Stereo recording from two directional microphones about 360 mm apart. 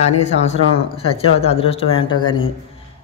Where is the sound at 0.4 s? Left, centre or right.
Centre.